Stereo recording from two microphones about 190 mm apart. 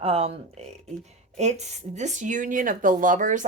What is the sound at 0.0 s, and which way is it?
Speech, 30° right (ahead or behind).